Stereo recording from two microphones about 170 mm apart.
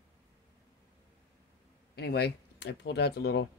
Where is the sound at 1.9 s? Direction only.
70° left (ahead or behind).